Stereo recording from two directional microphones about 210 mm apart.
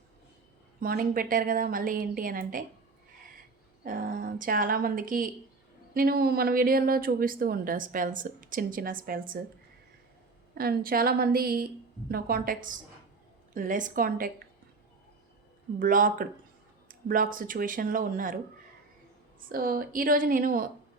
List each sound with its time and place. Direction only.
0.8 s a woman's voice: 45° right (ahead or behind)
3.8 s a woman's voice: 40° right (ahead or behind)
10.5 s a woman's voice: 45° right (ahead or behind)
15.8 s a woman's voice: 40° right (ahead or behind)
19.5 s a woman's voice: 45° right (ahead or behind)